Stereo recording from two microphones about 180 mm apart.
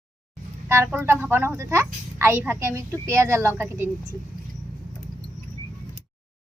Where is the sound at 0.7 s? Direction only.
10° right (ahead or behind).